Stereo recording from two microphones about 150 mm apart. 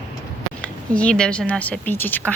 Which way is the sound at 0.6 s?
10° left (ahead or behind).